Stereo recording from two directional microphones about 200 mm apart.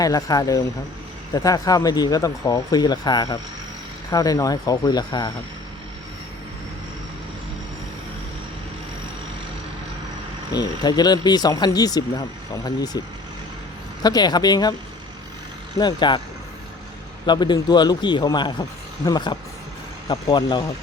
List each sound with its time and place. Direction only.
0.0 s speech: 15° left (ahead or behind)
10.5 s speech: 20° left (ahead or behind)
14.0 s speech: 20° left (ahead or behind)
15.8 s speech: 20° left (ahead or behind)
17.2 s speech: 20° left (ahead or behind)